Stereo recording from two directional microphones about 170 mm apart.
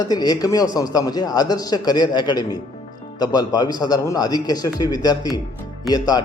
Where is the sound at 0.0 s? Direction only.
20° left (ahead or behind).